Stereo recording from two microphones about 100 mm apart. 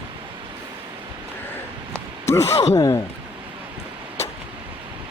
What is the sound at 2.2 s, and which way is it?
Speech, 25° left (ahead or behind).